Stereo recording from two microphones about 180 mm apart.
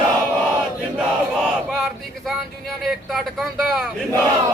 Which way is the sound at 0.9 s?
5° right (ahead or behind).